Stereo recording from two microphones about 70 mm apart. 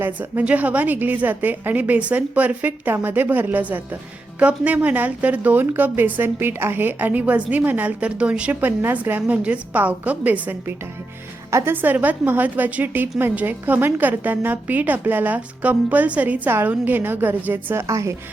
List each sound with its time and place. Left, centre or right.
0.0 s a woman's voice: right
17.8 s a woman's voice: right